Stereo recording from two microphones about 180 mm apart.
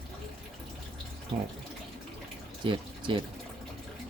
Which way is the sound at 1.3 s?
30° right (ahead or behind).